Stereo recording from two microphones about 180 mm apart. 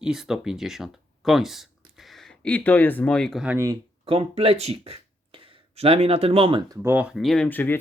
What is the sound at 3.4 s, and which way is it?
Speech, 10° right (ahead or behind).